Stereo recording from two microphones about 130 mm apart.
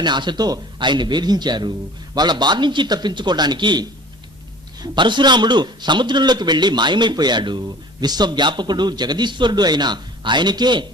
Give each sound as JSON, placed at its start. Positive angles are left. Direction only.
{"t": 0.0, "sound": "a man's voice", "side_deg": -35}